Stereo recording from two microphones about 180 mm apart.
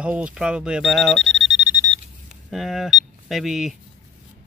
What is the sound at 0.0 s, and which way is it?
Speech, 5° right (ahead or behind).